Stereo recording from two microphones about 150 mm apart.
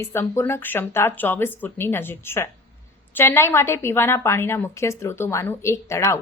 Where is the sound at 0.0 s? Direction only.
15° left (ahead or behind).